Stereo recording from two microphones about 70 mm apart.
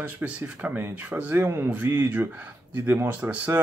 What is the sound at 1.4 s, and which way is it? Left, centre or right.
Speech, right.